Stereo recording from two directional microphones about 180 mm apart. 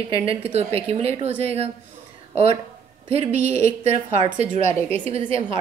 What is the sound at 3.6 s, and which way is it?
A woman's voice, 40° right (ahead or behind).